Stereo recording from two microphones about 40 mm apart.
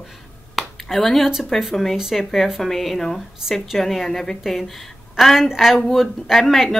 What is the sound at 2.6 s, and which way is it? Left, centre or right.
A woman's voice, centre.